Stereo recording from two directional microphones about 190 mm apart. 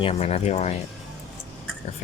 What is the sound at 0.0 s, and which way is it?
Speech, 30° left (ahead or behind).